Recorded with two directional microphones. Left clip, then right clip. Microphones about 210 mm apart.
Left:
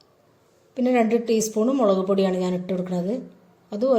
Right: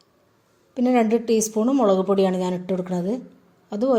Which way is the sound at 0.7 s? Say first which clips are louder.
Right 1 dB; 35° right (ahead or behind).